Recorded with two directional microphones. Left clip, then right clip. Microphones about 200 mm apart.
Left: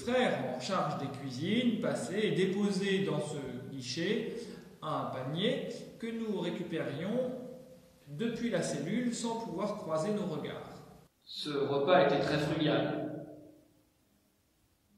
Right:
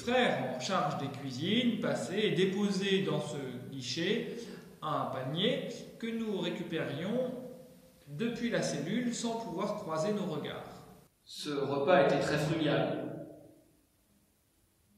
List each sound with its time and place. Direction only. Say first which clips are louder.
0.0 s a man's voice: right 1 dB; centre (ahead or behind)
11.4 s a man's voice: even; 15° right (ahead or behind)